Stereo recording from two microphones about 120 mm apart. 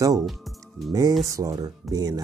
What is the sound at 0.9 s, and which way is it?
Speech, 30° right (ahead or behind).